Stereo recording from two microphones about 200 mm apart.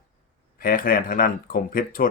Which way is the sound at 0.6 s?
45° left (ahead or behind).